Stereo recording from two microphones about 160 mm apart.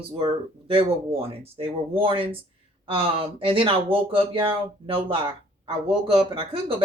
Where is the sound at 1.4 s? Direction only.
35° right (ahead or behind).